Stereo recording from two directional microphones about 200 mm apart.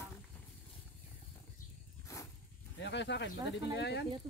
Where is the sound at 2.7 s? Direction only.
60° left (ahead or behind).